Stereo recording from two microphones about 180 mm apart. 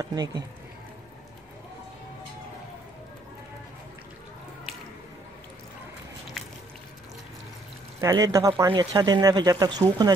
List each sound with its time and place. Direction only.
0.0 s speech: 20° right (ahead or behind)
8.0 s speech: 20° right (ahead or behind)